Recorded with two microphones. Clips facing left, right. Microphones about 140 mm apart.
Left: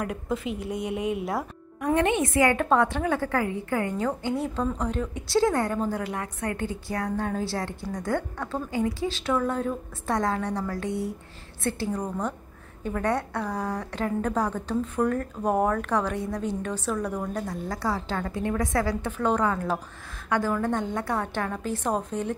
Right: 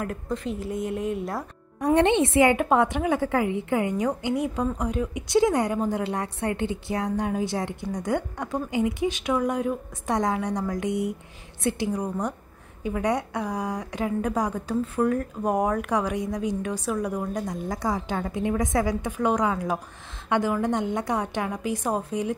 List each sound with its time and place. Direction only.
0.0 s a woman's voice: 5° left (ahead or behind)
2.0 s a woman's voice: 30° right (ahead or behind); by 22.3 s 10° right (ahead or behind)